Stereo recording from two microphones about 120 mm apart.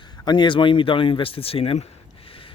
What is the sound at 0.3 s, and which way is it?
Speech, 40° left (ahead or behind).